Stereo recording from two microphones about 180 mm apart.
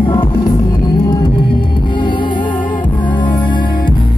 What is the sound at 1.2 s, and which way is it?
Music, 25° left (ahead or behind).